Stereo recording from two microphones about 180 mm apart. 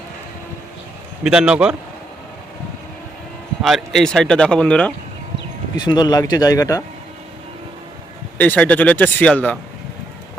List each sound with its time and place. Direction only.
1.2 s speech: 5° right (ahead or behind)
3.6 s speech: centre (ahead or behind)
5.7 s a man's voice: 25° left (ahead or behind)
8.4 s speech: 10° left (ahead or behind)